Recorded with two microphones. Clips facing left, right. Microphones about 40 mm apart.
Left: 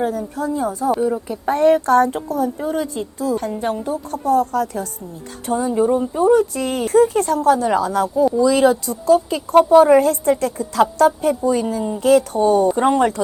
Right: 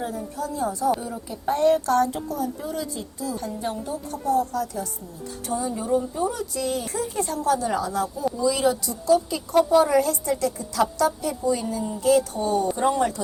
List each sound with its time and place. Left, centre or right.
0.0 s a woman's voice: left
0.4 s a woman's voice: left